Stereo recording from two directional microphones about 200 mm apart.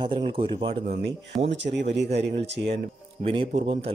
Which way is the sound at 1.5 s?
60° right (ahead or behind).